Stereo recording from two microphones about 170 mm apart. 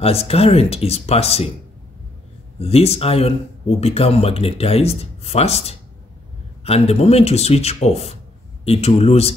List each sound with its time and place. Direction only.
0.0 s speech: 35° left (ahead or behind)
2.6 s speech: 35° left (ahead or behind)